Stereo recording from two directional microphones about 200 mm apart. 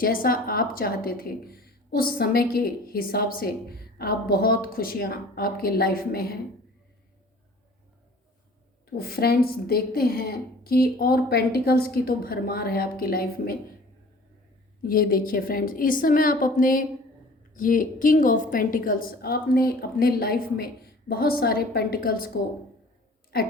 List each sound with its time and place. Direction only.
0.0 s a woman's voice: 45° left (ahead or behind)
8.9 s a woman's voice: 50° left (ahead or behind)
14.8 s a woman's voice: 45° left (ahead or behind)